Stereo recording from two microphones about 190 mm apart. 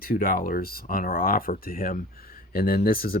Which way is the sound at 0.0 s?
50° left (ahead or behind).